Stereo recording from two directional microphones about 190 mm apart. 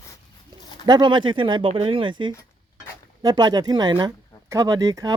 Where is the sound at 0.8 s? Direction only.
25° right (ahead or behind).